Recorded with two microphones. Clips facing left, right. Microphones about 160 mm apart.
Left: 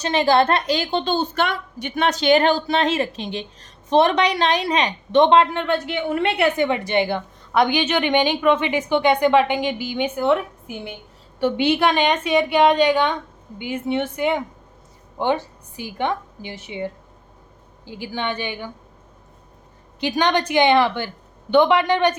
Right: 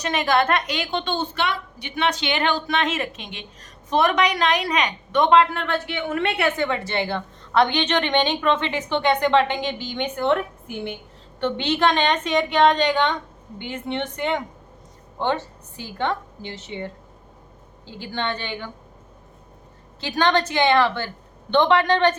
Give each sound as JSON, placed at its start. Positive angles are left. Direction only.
{"t": 0.0, "sound": "a woman's voice", "side_deg": 30}
{"t": 5.9, "sound": "a woman's voice", "side_deg": 10}
{"t": 20.0, "sound": "a woman's voice", "side_deg": 15}